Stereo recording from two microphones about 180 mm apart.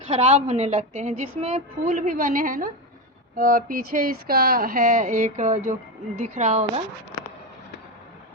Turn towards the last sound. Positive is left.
turn(degrees=-40)  # may be behind; listen again after turning